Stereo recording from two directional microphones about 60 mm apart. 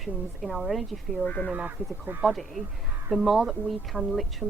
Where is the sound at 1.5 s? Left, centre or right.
Right.